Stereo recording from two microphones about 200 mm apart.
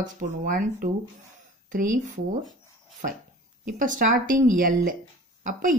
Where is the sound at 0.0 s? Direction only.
40° right (ahead or behind).